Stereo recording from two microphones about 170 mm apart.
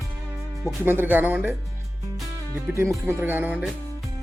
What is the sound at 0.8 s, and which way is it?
Speech, 10° right (ahead or behind).